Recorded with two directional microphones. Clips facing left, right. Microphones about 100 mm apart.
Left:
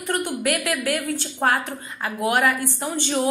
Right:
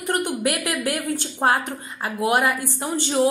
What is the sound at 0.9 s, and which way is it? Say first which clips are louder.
A woman's voice: even; 20° right (ahead or behind).